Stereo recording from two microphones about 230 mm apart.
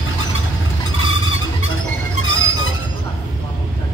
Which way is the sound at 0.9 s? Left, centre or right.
Left.